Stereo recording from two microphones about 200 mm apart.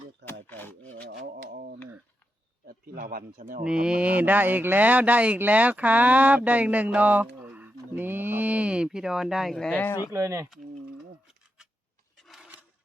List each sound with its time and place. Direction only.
0.3 s rub: 10° left (ahead or behind)
1.4 s a sound: 50° right (ahead or behind)
2.6 s speech: 45° right (ahead or behind)
3.6 s speech: 5° right (ahead or behind); by 10.1 s 15° left (ahead or behind)
10.1 s speech: 15° right (ahead or behind)
12.1 s filing: centre (ahead or behind)